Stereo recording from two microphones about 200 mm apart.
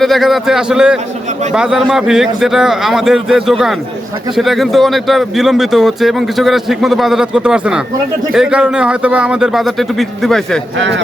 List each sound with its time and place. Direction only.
0.0 s speech: centre (ahead or behind)
10.8 s speech: 65° right (ahead or behind)